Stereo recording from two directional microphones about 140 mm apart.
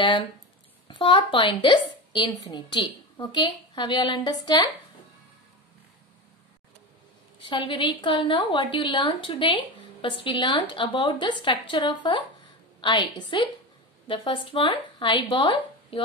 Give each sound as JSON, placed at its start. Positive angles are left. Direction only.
{"t": 0.8, "sound": "a woman's voice", "side_deg": 35}
{"t": 7.3, "sound": "a woman's voice", "side_deg": 35}